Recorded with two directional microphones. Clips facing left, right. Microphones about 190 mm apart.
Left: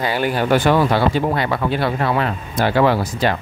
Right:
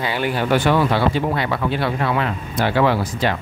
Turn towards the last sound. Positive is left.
turn(degrees=40)  # may be behind; listen again after turning